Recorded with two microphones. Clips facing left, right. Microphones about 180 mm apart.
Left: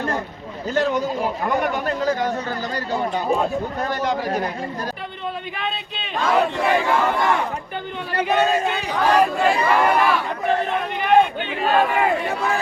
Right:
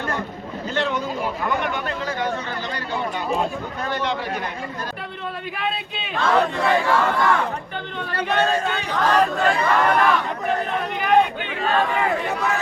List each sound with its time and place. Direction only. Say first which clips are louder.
0.7 s speech: left 4 dB; 40° left (ahead or behind)
3.8 s speech: right 1 dB; 40° left (ahead or behind)
5.5 s speech: right 1 dB; 5° right (ahead or behind)
6.1 s speech: even; 10° left (ahead or behind)
11.6 s speech: left 3 dB; 10° left (ahead or behind)